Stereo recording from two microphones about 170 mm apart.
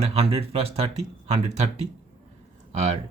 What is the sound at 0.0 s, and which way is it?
Speech, 35° right (ahead or behind).